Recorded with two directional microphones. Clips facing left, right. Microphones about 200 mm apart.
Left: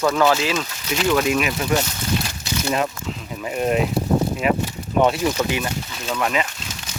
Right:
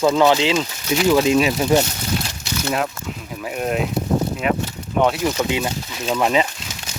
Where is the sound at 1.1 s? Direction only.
25° right (ahead or behind).